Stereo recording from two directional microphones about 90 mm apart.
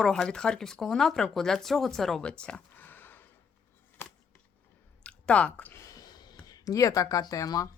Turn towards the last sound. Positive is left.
turn(degrees=40)  # may be behind; listen again after turning